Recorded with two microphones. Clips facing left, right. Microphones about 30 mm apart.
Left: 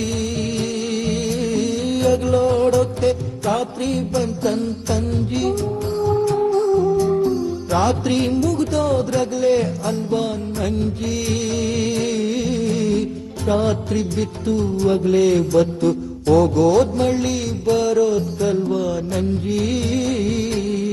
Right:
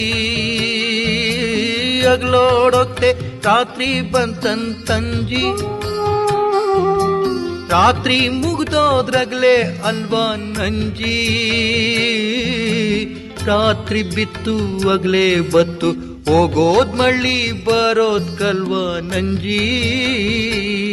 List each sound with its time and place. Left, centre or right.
0.0 s music: right